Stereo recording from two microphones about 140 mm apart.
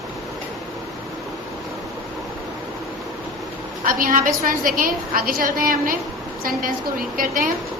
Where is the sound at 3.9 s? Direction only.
80° right.